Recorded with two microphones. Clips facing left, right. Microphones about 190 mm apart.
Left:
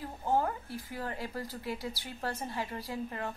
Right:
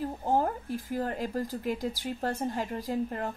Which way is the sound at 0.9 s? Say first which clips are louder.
Right 7 dB; 45° right (ahead or behind).